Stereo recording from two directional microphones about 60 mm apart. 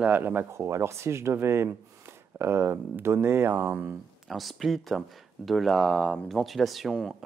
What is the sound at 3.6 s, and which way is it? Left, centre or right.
Speech, right.